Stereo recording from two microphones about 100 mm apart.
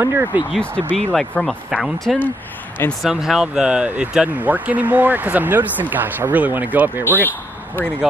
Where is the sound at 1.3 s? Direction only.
15° left (ahead or behind).